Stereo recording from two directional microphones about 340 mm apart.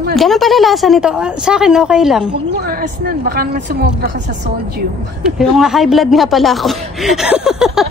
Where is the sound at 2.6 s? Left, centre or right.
Right.